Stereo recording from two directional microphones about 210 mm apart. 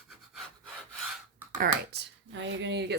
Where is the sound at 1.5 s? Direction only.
45° right (ahead or behind).